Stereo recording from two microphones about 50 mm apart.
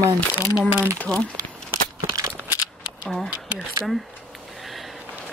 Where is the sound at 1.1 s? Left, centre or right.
Left.